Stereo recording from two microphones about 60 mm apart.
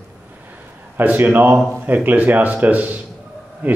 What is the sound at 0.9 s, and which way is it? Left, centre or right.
A man's voice, right.